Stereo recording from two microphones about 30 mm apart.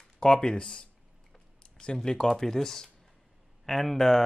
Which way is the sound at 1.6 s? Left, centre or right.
Left.